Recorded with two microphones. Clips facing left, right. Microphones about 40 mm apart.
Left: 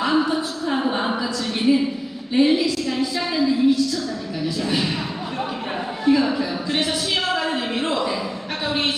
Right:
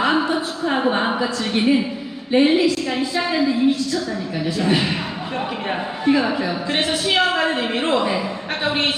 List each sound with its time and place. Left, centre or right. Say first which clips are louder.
0.0 s a sound: right 1 dB; right
2.3 s a woman's voice: right 2 dB; right
6.1 s a woman's voice: even; right